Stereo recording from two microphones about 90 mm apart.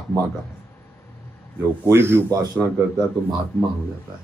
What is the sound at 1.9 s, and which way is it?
Speech, 30° right (ahead or behind).